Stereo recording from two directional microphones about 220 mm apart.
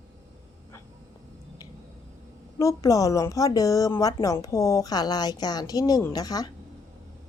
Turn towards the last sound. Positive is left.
turn(degrees=15)  # may be behind; listen again after turning